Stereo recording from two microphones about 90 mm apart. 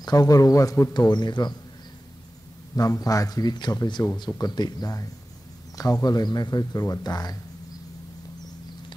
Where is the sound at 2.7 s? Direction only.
40° left (ahead or behind).